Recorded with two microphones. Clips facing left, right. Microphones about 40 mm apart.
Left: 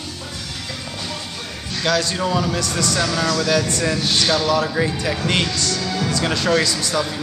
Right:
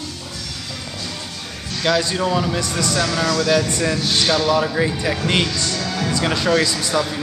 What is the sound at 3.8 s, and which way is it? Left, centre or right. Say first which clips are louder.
Speech: even; centre.